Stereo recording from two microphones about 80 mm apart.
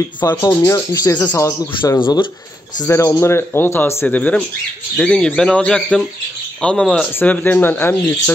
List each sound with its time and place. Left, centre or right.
0.2 s speech: left
0.7 s speech: left
1.1 s speech: left
2.0 s speech: left
2.9 s speech: left
4.2 s speech: centre
7.2 s speech: left